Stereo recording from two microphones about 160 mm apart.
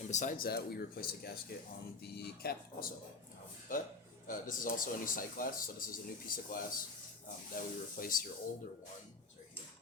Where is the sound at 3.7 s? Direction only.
60° left (ahead or behind).